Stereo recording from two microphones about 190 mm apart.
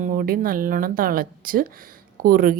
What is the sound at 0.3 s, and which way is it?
A woman's voice, 50° right (ahead or behind).